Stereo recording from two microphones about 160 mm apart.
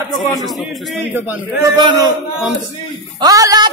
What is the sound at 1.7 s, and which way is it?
Speech, 25° right (ahead or behind).